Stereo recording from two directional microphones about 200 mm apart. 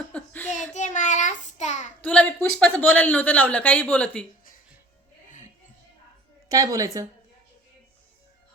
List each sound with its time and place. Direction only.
0.1 s a sound: 5° left (ahead or behind)
0.7 s child singing: 35° left (ahead or behind)
2.0 s speech: 5° left (ahead or behind)
6.5 s a woman's voice: 15° right (ahead or behind)